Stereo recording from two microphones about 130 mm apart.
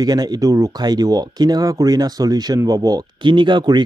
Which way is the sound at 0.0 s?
30° right (ahead or behind).